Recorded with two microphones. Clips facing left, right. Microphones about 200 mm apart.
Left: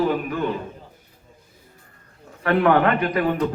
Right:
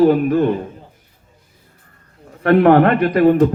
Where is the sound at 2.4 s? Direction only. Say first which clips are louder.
Right 7 dB; 40° right (ahead or behind).